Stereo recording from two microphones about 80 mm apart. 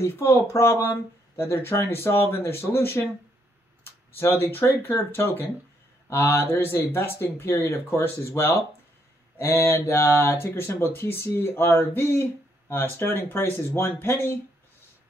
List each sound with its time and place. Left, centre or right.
0.0 s speech: left